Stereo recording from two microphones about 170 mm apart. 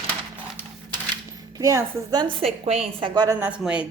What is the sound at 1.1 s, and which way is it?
Cap gun, 20° right (ahead or behind).